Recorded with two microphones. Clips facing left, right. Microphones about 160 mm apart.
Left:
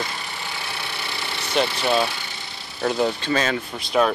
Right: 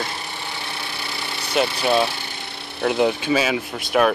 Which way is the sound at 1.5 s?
5° right (ahead or behind).